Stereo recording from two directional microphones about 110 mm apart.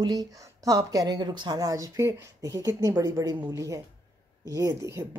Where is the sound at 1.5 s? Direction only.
30° right (ahead or behind).